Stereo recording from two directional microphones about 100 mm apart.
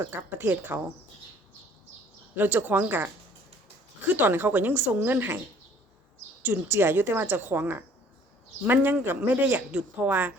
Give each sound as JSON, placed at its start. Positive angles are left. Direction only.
{"t": 0.0, "sound": "a woman's voice", "side_deg": -20}
{"t": 2.3, "sound": "a woman's voice", "side_deg": -20}
{"t": 4.1, "sound": "a woman's voice", "side_deg": -20}
{"t": 6.4, "sound": "a woman's voice", "side_deg": -20}